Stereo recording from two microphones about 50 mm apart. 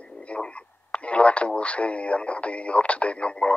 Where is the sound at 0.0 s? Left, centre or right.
Left.